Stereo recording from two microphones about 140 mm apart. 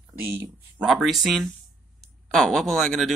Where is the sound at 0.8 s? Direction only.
Centre (ahead or behind).